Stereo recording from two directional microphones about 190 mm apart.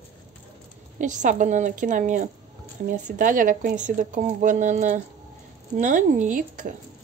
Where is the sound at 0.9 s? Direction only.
40° right (ahead or behind).